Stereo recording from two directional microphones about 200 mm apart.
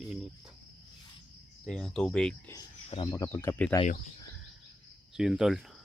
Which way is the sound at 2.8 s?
30° left (ahead or behind).